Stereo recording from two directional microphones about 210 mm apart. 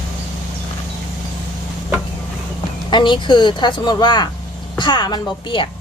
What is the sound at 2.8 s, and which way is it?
Speech, 20° left (ahead or behind).